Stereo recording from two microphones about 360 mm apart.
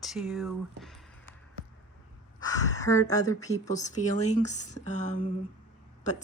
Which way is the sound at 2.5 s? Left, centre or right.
Centre.